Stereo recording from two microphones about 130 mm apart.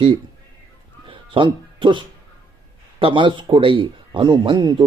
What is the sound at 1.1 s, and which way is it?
Music, 40° right (ahead or behind).